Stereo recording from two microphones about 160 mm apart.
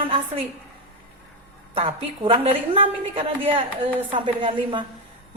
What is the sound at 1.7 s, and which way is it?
A woman's voice, 35° right (ahead or behind).